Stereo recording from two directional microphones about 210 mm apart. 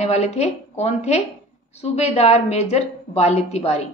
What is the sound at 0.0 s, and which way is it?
A woman's voice, 30° left (ahead or behind).